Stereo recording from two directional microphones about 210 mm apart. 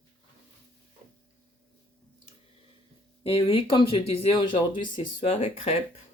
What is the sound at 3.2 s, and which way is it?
Speech, 25° left (ahead or behind).